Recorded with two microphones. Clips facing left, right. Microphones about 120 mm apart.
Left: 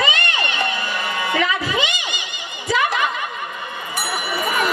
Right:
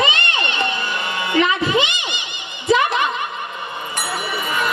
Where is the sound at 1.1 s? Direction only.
20° right (ahead or behind).